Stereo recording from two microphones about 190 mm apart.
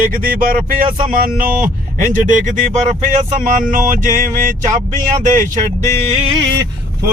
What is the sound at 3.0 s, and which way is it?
Speech, 45° right (ahead or behind).